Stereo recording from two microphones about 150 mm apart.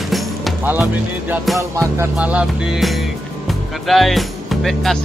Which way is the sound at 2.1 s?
10° right (ahead or behind).